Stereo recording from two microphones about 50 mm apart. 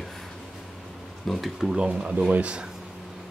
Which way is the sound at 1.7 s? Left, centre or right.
Right.